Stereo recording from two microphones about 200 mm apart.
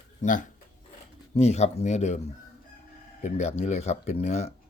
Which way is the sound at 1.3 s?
35° left (ahead or behind).